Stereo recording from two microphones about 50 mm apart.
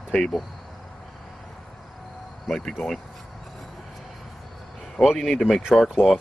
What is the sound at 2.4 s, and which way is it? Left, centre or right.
Speech, centre.